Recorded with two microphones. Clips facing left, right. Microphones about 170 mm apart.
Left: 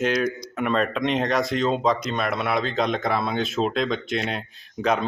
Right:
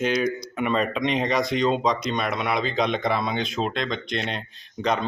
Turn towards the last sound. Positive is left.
turn(degrees=5)  # may be behind; listen again after turning